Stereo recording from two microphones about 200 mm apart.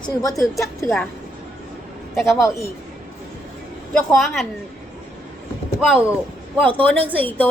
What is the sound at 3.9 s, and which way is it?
Speech, 5° left (ahead or behind).